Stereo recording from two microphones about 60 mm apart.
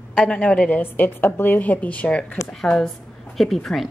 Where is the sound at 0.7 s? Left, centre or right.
Left; by 2.9 s centre.